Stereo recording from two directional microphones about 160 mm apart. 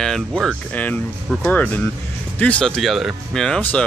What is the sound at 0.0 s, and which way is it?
Speech, 5° left (ahead or behind).